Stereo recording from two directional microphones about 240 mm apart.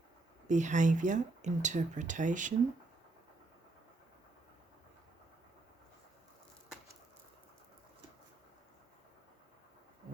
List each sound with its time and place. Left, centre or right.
0.4 s speech: right